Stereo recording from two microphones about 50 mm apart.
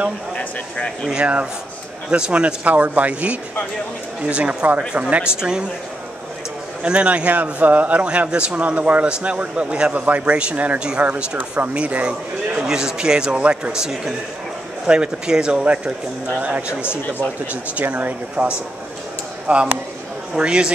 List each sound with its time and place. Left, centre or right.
1.1 s speech: centre
6.8 s speech: right
10.8 s speech: centre
12.5 s speech: centre; by 16.7 s right
16.8 s speech: left
17.5 s speech: right